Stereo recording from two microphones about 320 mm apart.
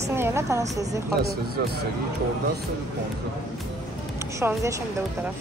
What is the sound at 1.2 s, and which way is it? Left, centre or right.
Speech, right.